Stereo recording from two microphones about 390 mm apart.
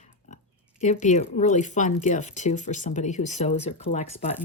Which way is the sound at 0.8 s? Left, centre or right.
Centre.